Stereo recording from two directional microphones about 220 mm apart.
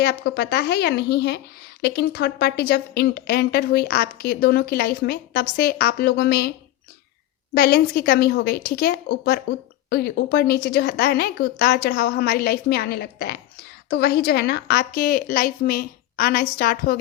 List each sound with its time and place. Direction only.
0.0 s speech: 45° left (ahead or behind)
7.5 s speech: 45° left (ahead or behind)